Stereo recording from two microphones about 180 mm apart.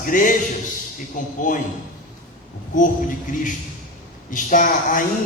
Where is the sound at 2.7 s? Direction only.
45° left (ahead or behind).